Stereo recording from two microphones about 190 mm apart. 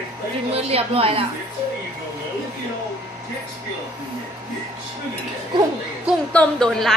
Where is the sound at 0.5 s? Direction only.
30° right (ahead or behind).